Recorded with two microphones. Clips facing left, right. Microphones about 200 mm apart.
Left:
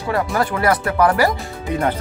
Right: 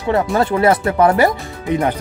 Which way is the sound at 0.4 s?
25° right (ahead or behind).